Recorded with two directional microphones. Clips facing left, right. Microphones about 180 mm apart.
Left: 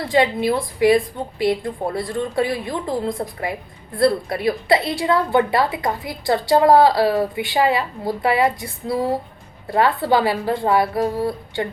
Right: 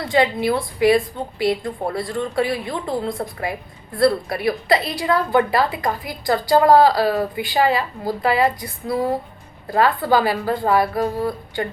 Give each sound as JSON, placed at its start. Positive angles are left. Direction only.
{"t": 0.1, "sound": "a woman's voice", "side_deg": 25}